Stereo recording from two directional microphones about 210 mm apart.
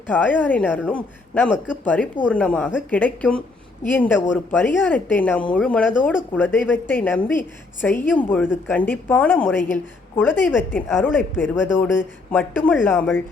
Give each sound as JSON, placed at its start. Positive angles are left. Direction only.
{"t": 0.1, "sound": "a woman's voice", "side_deg": 10}